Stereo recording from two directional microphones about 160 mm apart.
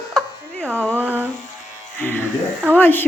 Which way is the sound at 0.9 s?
10° right (ahead or behind).